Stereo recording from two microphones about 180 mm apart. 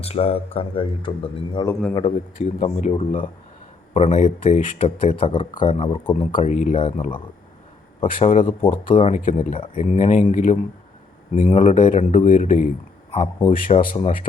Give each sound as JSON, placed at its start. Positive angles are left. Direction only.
{"t": 0.0, "sound": "speech", "side_deg": 35}
{"t": 2.1, "sound": "speech", "side_deg": 40}
{"t": 3.9, "sound": "speech", "side_deg": 40}
{"t": 6.4, "sound": "a man's voice", "side_deg": 45}
{"t": 13.5, "sound": "a man's voice", "side_deg": 50}